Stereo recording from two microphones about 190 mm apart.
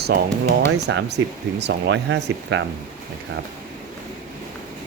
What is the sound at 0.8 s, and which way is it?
Speech, 65° right (ahead or behind).